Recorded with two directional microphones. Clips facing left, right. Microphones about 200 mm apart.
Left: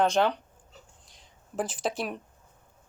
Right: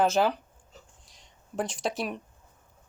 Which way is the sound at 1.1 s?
Centre (ahead or behind).